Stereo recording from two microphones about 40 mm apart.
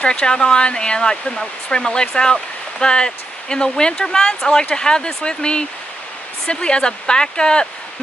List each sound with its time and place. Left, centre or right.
0.0 s speech: left